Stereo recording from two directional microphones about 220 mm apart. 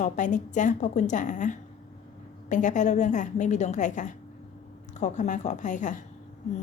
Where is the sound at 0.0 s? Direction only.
35° left (ahead or behind).